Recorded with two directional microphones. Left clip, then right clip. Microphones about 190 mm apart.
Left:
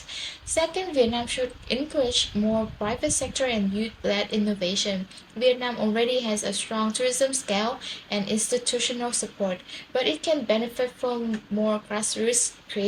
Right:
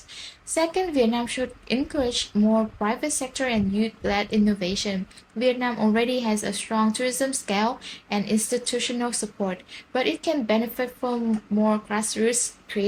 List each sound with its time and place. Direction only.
0.5 s a woman's voice: 60° right (ahead or behind)